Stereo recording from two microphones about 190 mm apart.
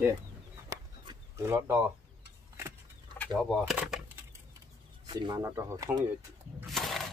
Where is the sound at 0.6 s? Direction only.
15° right (ahead or behind).